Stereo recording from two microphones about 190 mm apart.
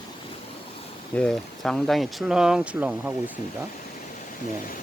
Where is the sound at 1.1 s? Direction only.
5° left (ahead or behind).